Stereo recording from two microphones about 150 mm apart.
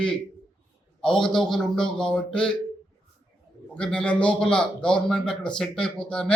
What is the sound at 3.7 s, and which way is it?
A man's voice, 5° left (ahead or behind).